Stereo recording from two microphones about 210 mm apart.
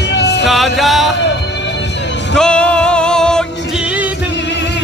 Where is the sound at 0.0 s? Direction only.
55° left (ahead or behind).